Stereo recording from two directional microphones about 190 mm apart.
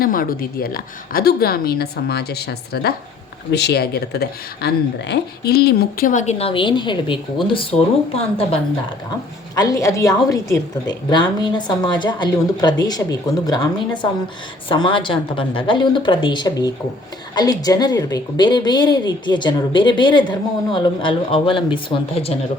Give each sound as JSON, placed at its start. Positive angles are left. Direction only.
{"t": 0.0, "sound": "a woman's voice", "side_deg": 50}
{"t": 9.6, "sound": "a woman's voice", "side_deg": 20}